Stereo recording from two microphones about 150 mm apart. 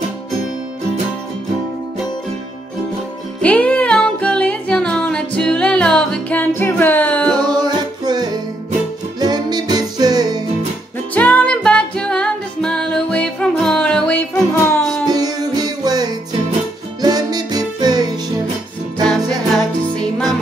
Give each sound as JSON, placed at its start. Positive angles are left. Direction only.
{"t": 3.4, "sound": "music", "side_deg": 10}
{"t": 7.3, "sound": "music", "side_deg": -30}
{"t": 11.1, "sound": "music", "side_deg": 10}
{"t": 15.0, "sound": "music", "side_deg": -25}
{"t": 19.5, "sound": "music", "side_deg": 0}